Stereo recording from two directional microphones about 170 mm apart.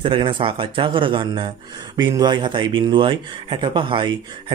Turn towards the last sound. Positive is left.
turn(degrees=-30)  # may be behind; listen again after turning